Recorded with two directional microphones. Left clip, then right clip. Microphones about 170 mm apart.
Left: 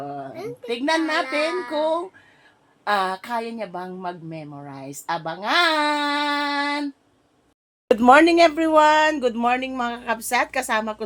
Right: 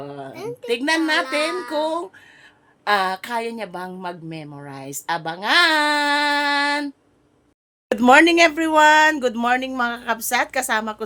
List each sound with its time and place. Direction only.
0.0 s a woman's voice: 20° right (ahead or behind)
7.9 s a woman's voice: 10° right (ahead or behind)